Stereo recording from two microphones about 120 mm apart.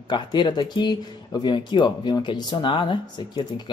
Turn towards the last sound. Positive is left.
turn(degrees=40)  # may be behind; listen again after turning